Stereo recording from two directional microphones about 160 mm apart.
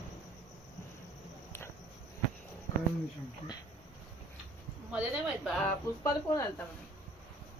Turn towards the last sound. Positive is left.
turn(degrees=15)  # may be behind; listen again after turning